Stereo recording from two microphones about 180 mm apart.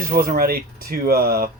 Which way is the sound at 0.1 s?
55° right (ahead or behind).